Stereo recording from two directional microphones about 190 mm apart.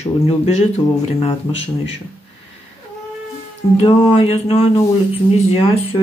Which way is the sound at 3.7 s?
30° left (ahead or behind).